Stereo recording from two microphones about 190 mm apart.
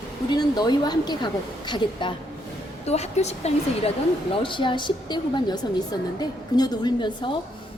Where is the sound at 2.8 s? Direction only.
35° left (ahead or behind).